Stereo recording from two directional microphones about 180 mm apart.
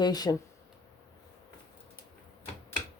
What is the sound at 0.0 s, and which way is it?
Speech, 20° left (ahead or behind).